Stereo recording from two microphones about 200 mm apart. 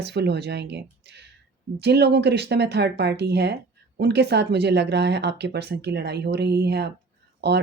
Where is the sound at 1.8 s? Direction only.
55° right (ahead or behind).